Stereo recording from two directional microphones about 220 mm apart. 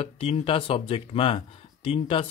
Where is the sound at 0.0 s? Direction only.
25° left (ahead or behind).